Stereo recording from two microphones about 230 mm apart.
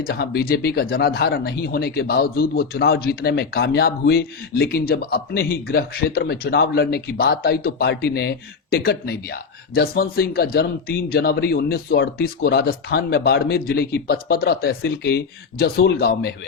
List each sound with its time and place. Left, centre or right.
0.0 s speech: left